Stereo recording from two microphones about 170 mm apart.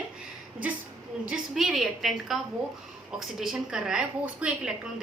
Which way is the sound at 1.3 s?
Centre (ahead or behind).